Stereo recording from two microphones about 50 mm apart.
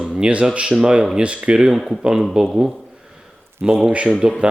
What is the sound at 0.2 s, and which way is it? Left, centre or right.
Speech, right.